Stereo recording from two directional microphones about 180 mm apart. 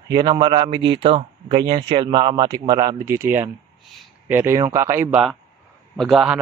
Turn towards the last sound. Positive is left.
turn(degrees=-5)  # may be behind; listen again after turning